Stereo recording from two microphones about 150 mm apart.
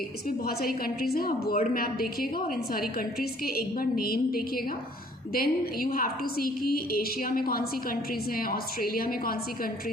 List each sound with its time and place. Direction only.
0.3 s a woman's voice: 85° left